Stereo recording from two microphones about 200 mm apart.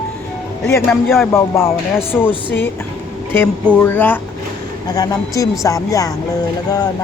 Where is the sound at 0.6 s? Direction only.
10° left (ahead or behind).